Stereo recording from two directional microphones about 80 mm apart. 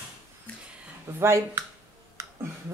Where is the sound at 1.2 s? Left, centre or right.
Right.